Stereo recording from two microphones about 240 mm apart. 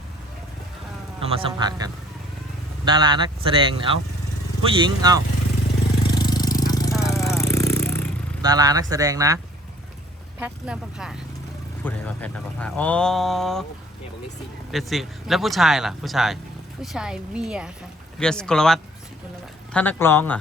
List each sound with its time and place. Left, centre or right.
1.2 s speech: right
6.1 s a sound: centre
8.4 s speech: centre
10.4 s speech: centre
14.7 s speech: centre